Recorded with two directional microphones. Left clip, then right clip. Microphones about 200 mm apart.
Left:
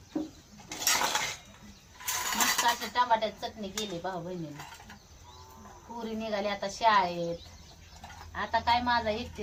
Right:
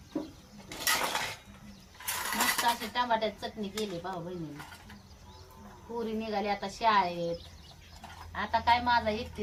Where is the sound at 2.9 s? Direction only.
5° right (ahead or behind).